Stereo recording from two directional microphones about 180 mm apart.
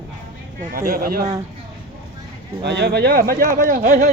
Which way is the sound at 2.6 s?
70° right (ahead or behind).